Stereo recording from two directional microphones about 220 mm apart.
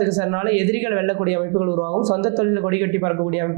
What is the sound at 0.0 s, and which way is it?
Speech, 20° right (ahead or behind).